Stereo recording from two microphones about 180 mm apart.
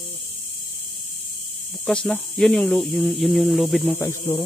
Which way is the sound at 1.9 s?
5° left (ahead or behind).